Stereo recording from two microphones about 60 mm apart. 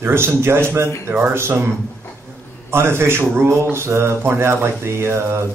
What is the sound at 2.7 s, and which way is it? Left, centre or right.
Speech, right.